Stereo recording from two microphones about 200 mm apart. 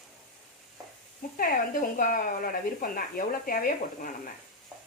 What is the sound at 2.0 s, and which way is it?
Speech, 45° left (ahead or behind).